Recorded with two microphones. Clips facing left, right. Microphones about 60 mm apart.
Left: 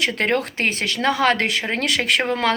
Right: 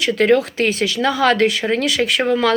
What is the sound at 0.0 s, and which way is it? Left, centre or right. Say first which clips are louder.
Speech: right 6 dB; left.